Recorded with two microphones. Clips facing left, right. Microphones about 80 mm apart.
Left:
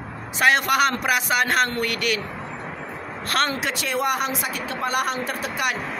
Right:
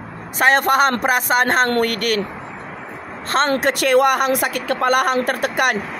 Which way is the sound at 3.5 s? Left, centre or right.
Right.